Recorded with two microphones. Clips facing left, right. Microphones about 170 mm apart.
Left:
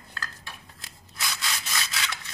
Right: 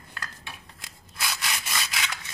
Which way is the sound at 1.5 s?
15° right (ahead or behind).